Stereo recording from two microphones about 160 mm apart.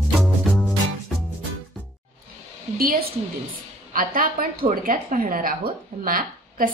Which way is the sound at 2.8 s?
65° right (ahead or behind).